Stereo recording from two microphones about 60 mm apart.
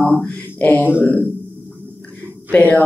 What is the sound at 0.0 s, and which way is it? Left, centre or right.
Mantra, centre.